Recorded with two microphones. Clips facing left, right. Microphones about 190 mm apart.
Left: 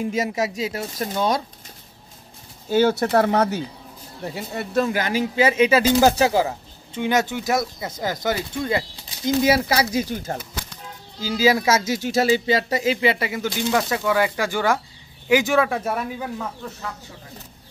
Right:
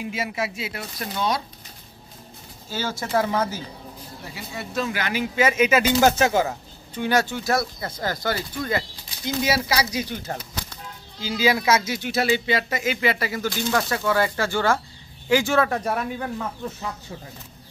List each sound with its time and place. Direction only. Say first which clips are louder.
0.0 s speech: left 5 dB; 40° left (ahead or behind)
2.7 s speech: left 8 dB; 60° left (ahead or behind)
4.4 s speech: left 6 dB; 55° left (ahead or behind); by 8.8 s 20° left (ahead or behind)
9.5 s speech: left 4 dB; 50° left (ahead or behind); by 16.4 s centre (ahead or behind)